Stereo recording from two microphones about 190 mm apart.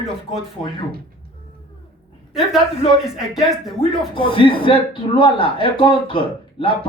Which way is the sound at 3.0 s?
Centre (ahead or behind).